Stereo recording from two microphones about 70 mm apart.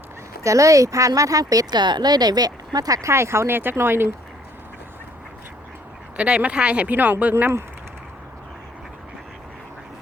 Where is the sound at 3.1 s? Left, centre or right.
Right.